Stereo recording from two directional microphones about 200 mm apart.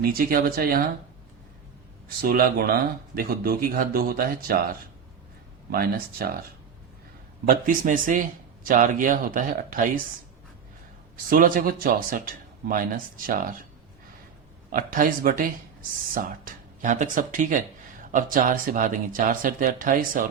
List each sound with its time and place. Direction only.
0.0 s speech: 45° right (ahead or behind)
2.0 s speech: 50° right (ahead or behind)
5.7 s speech: 50° right (ahead or behind)
7.7 s speech: 40° right (ahead or behind)
11.3 s speech: 40° right (ahead or behind)
14.7 s speech: 45° right (ahead or behind)